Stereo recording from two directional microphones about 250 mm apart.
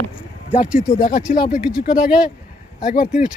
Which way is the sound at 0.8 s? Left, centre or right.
Left.